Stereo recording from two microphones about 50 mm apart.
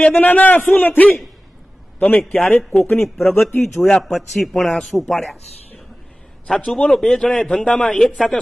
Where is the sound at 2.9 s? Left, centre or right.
Centre.